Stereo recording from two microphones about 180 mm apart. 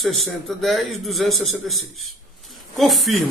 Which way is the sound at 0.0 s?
Centre (ahead or behind).